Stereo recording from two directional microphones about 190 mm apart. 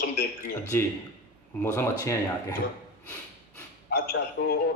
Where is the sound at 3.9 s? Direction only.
55° left (ahead or behind).